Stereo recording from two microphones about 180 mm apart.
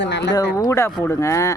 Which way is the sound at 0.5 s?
15° left (ahead or behind).